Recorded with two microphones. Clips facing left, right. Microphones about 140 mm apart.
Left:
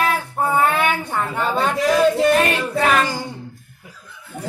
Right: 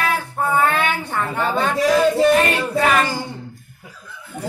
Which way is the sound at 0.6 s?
15° left (ahead or behind).